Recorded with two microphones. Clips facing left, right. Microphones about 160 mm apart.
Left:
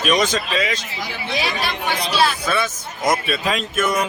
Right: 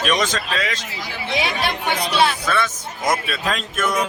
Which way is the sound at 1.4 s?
20° right (ahead or behind).